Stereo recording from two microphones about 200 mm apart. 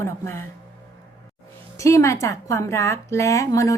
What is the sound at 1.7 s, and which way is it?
A woman's voice, 15° left (ahead or behind).